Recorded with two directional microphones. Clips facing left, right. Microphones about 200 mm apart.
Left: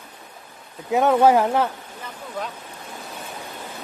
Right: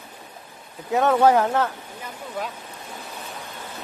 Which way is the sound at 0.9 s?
10° left (ahead or behind).